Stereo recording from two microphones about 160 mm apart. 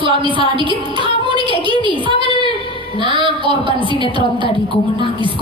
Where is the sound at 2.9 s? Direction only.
35° left (ahead or behind).